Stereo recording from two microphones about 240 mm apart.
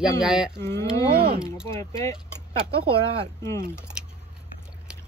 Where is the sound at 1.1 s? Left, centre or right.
Right.